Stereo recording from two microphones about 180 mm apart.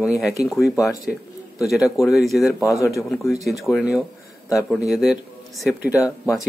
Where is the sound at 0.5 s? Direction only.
Centre (ahead or behind).